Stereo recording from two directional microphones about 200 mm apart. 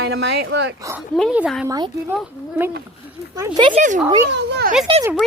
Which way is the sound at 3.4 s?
20° right (ahead or behind).